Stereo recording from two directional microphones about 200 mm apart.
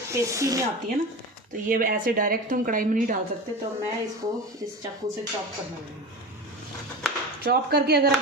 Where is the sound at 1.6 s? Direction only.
45° right (ahead or behind).